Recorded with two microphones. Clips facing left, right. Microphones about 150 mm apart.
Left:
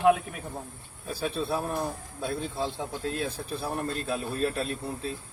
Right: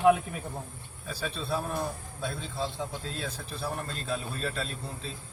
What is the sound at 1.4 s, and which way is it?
Speech, 15° left (ahead or behind).